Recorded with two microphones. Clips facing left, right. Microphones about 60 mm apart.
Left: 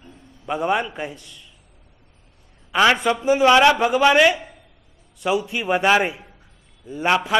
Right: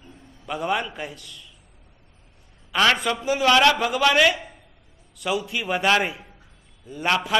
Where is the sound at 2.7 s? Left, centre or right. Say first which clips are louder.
Left 3 dB; left.